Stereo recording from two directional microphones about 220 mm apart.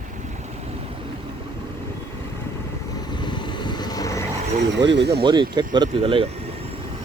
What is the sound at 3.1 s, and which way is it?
Vehicle, 20° left (ahead or behind).